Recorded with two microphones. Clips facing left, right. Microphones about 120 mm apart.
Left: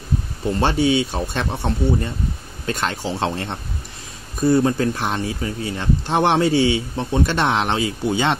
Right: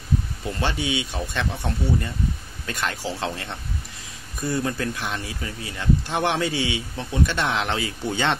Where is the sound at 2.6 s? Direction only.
30° left (ahead or behind).